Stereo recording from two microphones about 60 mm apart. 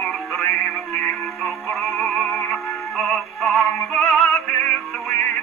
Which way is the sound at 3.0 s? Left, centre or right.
Centre.